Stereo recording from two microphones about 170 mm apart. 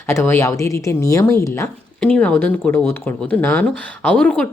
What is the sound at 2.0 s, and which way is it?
Speech, 5° left (ahead or behind).